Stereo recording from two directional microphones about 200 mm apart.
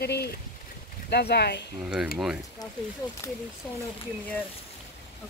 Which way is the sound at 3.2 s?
15° left (ahead or behind).